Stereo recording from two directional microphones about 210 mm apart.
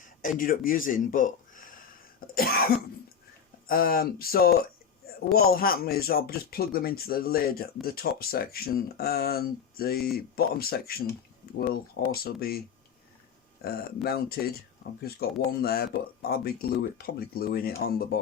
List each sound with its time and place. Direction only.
0.0 s speech: 40° left (ahead or behind)
3.7 s speech: 45° left (ahead or behind)
5.0 s a sound: 45° left (ahead or behind)
5.5 s speech: 45° left (ahead or behind)
13.6 s speech: 45° left (ahead or behind)